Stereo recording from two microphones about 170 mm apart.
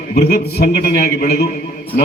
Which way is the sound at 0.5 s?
65° left (ahead or behind).